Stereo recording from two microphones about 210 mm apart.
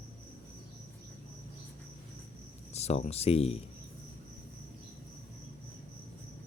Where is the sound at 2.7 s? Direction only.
30° left (ahead or behind).